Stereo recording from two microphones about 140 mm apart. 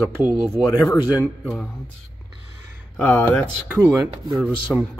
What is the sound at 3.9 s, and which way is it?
Speech, 25° right (ahead or behind).